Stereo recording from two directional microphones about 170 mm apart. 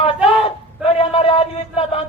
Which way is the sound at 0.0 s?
35° left (ahead or behind).